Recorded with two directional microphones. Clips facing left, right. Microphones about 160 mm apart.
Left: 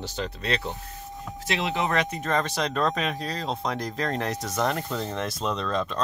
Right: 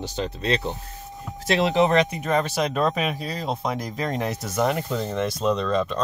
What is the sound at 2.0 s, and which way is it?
Speech, 10° right (ahead or behind).